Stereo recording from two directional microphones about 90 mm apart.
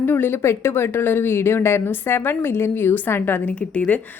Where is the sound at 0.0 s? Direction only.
25° left (ahead or behind).